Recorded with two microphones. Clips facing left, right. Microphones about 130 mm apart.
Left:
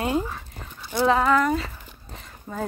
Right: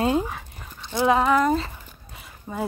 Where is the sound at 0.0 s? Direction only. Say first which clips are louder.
Right 3 dB; 20° right (ahead or behind).